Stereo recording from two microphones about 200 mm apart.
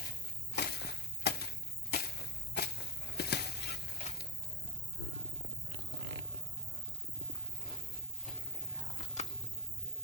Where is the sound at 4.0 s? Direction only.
40° left (ahead or behind).